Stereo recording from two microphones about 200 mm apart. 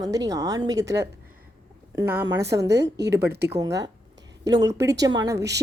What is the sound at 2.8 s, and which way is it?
Speech, 60° right (ahead or behind).